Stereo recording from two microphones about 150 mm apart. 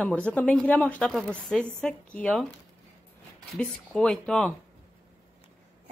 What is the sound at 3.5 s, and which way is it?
A woman's voice, 5° left (ahead or behind).